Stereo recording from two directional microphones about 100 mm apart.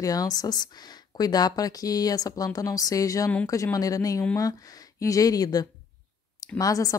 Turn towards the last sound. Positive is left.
turn(degrees=35)  # may be behind; listen again after turning